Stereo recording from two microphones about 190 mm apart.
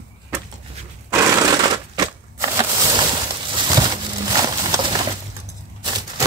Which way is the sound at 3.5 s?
25° right (ahead or behind).